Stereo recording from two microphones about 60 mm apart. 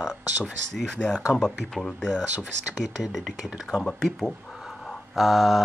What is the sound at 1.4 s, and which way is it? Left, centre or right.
Speech, centre.